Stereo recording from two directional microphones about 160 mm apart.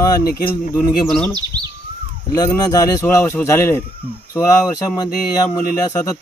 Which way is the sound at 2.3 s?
25° left (ahead or behind).